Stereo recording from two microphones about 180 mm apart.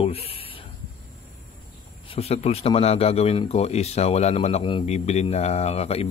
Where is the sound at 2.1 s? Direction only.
35° left (ahead or behind).